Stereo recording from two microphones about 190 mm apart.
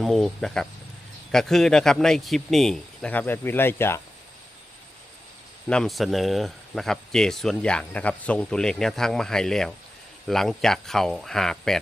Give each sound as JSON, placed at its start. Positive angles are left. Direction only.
{"t": 0.0, "sound": "speech", "side_deg": 0}
{"t": 5.6, "sound": "speech", "side_deg": 5}